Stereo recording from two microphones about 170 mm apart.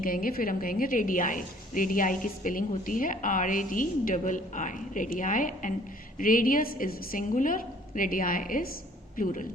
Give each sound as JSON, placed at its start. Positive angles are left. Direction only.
{"t": 0.0, "sound": "a woman's voice", "side_deg": 55}